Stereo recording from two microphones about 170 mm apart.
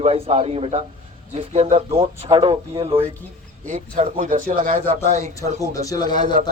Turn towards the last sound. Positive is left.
turn(degrees=25)  # may be behind; listen again after turning